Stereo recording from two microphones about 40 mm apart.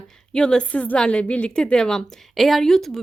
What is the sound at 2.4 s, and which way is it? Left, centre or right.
Speech, centre.